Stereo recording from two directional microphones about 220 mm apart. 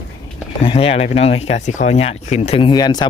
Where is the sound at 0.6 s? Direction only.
25° left (ahead or behind).